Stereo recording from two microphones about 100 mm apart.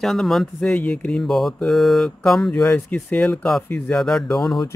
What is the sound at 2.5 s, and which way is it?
A man's voice, 15° left (ahead or behind).